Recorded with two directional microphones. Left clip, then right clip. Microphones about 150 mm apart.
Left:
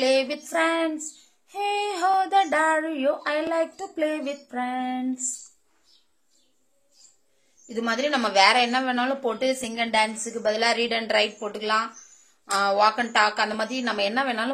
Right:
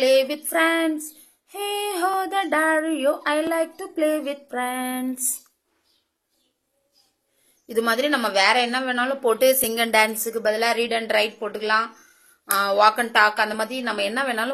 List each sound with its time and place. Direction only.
0.0 s female singing: 15° right (ahead or behind); by 5.0 s 30° right (ahead or behind)
7.6 s female singing: 30° right (ahead or behind); by 9.3 s 15° right (ahead or behind)
9.3 s speech: 40° right (ahead or behind)
10.4 s speech: 10° right (ahead or behind)
12.7 s a woman's voice: 30° right (ahead or behind)